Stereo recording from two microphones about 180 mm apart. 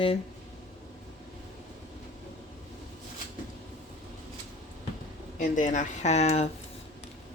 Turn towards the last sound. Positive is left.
turn(degrees=35)  # may be behind; listen again after turning